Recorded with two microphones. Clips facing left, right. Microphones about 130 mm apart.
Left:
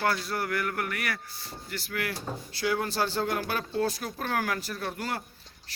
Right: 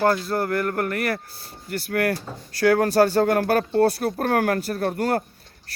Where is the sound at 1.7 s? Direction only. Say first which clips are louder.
Right 11 dB; 55° right (ahead or behind).